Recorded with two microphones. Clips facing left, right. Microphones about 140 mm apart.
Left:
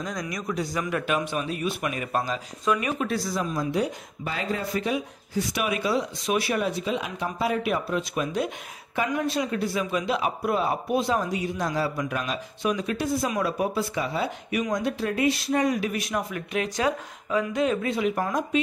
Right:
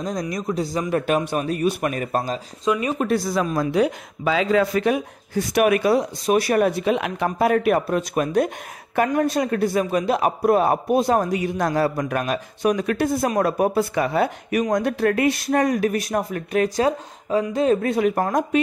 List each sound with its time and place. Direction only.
0.0 s a man's voice: 35° right (ahead or behind)
2.6 s speech: 25° right (ahead or behind)
3.0 s speech: 55° right (ahead or behind); by 4.9 s 85° right
4.9 s a man's voice: 55° right (ahead or behind)
6.2 s speech: 40° right (ahead or behind)
6.6 s a man's voice: 60° right (ahead or behind)